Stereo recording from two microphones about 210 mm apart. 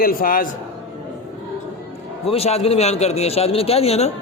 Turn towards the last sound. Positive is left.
turn(degrees=30)  # may be behind; listen again after turning